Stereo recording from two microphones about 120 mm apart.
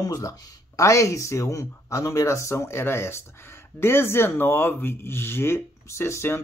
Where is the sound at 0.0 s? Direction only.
30° left (ahead or behind).